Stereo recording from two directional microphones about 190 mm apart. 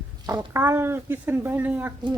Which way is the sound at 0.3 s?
15° right (ahead or behind).